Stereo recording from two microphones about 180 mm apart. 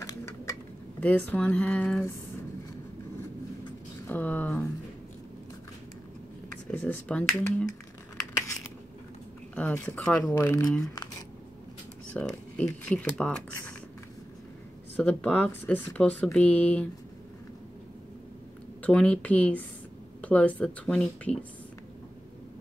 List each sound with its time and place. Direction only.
1.0 s speech: 10° left (ahead or behind)
4.1 s speech: 10° left (ahead or behind)
6.5 s speech: 10° left (ahead or behind)
9.6 s speech: 10° left (ahead or behind)
10.3 s speech: 15° left (ahead or behind)
12.1 s speech: 5° left (ahead or behind)
15.0 s speech: 5° left (ahead or behind)
18.8 s speech: 5° left (ahead or behind)